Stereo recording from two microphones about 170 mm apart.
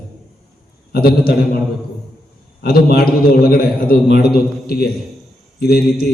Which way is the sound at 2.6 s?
65° left (ahead or behind).